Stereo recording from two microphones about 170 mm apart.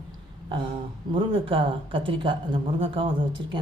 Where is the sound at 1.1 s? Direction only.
30° right (ahead or behind).